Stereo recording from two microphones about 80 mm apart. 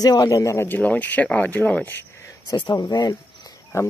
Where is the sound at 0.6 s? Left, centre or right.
Left.